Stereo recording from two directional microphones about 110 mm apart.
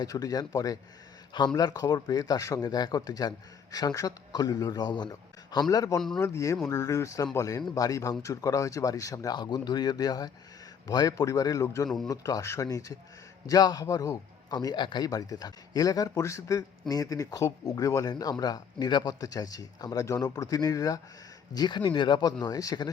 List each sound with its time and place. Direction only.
0.0 s speech: 35° left (ahead or behind)